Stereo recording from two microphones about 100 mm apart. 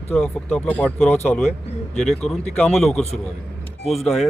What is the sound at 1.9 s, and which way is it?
Speech, 5° left (ahead or behind).